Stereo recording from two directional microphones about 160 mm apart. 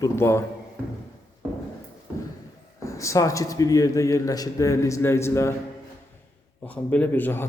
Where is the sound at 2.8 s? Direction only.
20° left (ahead or behind).